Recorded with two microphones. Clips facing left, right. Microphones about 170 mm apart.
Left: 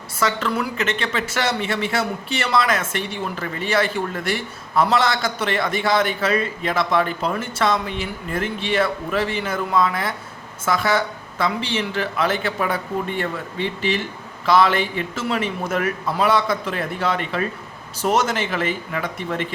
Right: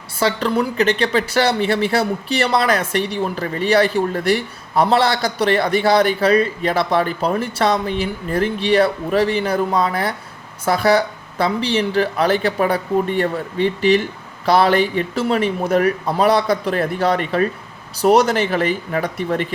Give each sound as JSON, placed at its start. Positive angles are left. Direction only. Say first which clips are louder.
{"t": 0.2, "sound": "speech", "louder": "right 4 dB", "side_deg": -35}